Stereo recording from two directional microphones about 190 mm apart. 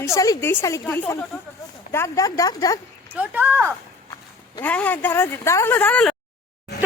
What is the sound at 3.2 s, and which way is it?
Speech, 10° right (ahead or behind).